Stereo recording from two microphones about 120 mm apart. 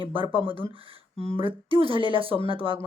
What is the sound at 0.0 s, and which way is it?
Speech, 45° right (ahead or behind).